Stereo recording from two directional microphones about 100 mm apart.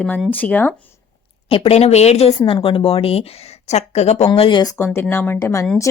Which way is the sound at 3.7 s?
90° left.